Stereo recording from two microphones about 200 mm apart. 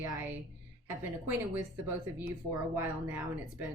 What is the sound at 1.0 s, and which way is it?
Speech, 10° right (ahead or behind).